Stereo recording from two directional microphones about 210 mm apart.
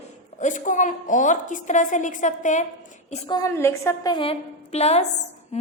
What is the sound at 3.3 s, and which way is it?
A woman's voice, 15° left (ahead or behind).